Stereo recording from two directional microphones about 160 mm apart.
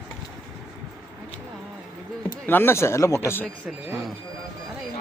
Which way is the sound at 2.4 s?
15° left (ahead or behind).